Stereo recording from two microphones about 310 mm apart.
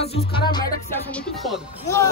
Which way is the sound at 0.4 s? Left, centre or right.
Centre.